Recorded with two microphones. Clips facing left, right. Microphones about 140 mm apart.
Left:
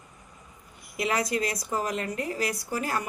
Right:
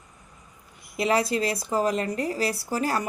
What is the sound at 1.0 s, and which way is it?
A woman's voice, 30° right (ahead or behind).